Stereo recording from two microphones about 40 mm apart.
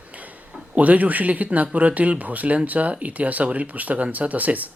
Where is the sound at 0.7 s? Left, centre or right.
Right.